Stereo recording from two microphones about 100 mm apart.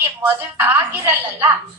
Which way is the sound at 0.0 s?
20° right (ahead or behind).